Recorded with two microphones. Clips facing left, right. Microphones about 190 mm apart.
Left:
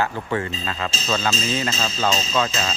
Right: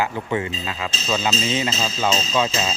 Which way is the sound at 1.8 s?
10° right (ahead or behind).